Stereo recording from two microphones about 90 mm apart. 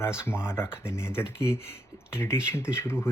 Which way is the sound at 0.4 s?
25° left (ahead or behind).